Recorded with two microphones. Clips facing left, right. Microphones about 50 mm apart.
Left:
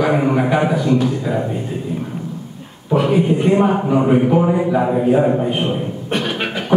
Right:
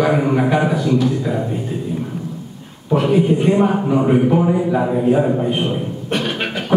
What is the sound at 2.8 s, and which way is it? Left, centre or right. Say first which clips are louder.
A man's voice: even; centre.